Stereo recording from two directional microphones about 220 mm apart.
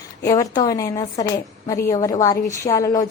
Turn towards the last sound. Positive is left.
turn(degrees=15)  # may be behind; listen again after turning